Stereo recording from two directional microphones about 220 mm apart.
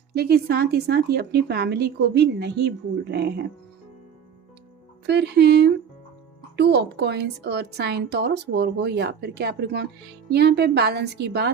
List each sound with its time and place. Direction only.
0.1 s a woman's voice: 45° right (ahead or behind)
5.0 s a woman's voice: 50° right (ahead or behind)